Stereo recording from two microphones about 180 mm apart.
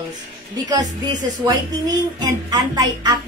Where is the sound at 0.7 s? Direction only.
20° right (ahead or behind).